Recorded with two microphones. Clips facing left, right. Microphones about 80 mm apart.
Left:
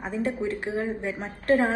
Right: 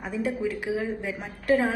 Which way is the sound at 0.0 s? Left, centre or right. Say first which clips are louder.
Even; left.